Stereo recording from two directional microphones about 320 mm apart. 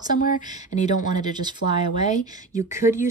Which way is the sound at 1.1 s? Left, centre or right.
Centre.